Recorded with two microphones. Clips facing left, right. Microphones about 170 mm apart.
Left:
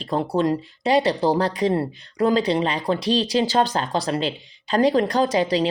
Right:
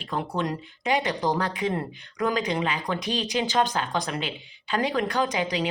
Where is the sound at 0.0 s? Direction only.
35° left (ahead or behind).